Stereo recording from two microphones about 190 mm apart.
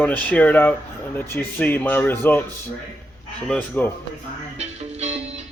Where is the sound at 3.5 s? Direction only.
10° left (ahead or behind).